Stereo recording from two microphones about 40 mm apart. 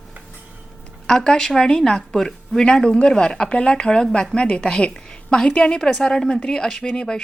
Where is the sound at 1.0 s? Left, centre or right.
Centre.